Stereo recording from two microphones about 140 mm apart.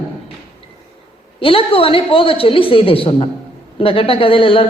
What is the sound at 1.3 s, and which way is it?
A woman's voice, 40° left (ahead or behind).